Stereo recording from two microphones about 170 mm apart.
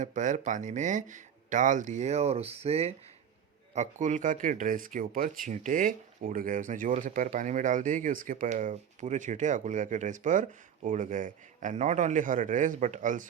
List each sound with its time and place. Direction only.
0.0 s speech: 45° right (ahead or behind)
3.8 s speech: 45° right (ahead or behind)